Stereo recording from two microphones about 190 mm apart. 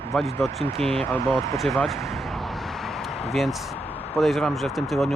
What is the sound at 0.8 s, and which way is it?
Speech, 30° right (ahead or behind).